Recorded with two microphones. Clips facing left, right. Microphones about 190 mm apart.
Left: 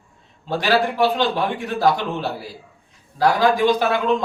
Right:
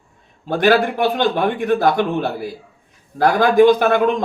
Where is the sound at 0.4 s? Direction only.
55° right (ahead or behind).